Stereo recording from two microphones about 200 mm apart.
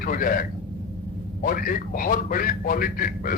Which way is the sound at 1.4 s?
45° left (ahead or behind).